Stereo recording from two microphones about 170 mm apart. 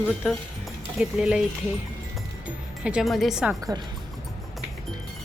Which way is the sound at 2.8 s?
5° right (ahead or behind).